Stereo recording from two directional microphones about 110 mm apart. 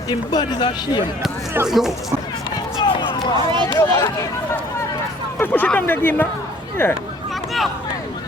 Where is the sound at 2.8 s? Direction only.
50° left (ahead or behind).